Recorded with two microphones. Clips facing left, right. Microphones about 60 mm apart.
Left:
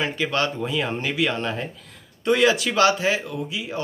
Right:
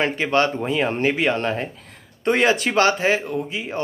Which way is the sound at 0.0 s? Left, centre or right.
Right.